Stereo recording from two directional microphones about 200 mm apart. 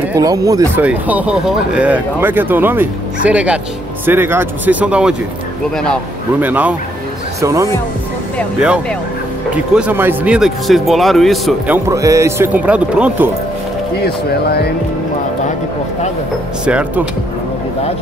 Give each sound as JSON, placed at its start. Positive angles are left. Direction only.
{"t": 0.1, "sound": "speech", "side_deg": -15}
{"t": 6.4, "sound": "speech", "side_deg": -5}
{"t": 8.5, "sound": "speech", "side_deg": -5}
{"t": 14.0, "sound": "speech", "side_deg": 55}
{"t": 16.6, "sound": "speech", "side_deg": -5}